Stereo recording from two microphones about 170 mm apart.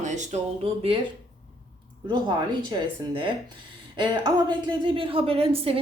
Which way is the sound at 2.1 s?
25° right (ahead or behind).